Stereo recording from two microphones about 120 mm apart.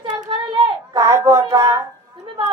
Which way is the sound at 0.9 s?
30° right (ahead or behind).